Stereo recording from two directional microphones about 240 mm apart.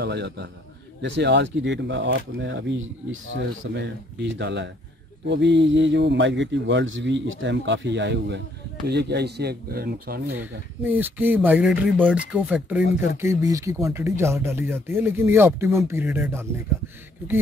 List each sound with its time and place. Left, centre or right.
0.0 s speech: right
10.4 s speech: centre
12.8 s speech: left
13.2 s speech: centre